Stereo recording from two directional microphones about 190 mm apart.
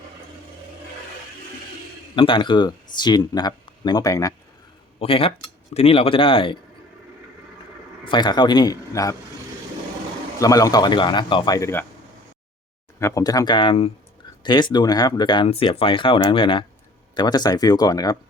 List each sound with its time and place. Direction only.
2.1 s speech: 25° left (ahead or behind)
4.9 s speech: 30° left (ahead or behind)
8.0 s speech: 25° left (ahead or behind)
10.4 s speech: 20° left (ahead or behind)
13.0 s speech: 15° left (ahead or behind)